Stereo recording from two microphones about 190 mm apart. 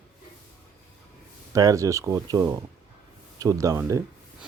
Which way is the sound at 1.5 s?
20° right (ahead or behind).